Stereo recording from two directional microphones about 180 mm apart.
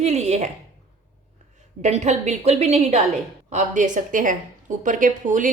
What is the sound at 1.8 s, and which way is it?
A woman's voice, 40° right (ahead or behind).